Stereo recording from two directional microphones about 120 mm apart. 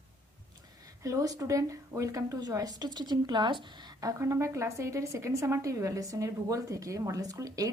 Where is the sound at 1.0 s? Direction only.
30° right (ahead or behind).